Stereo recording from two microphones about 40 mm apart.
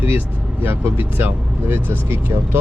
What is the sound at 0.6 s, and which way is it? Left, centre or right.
Speech, right.